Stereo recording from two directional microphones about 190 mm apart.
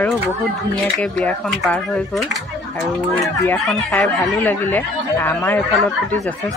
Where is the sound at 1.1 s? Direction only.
5° left (ahead or behind).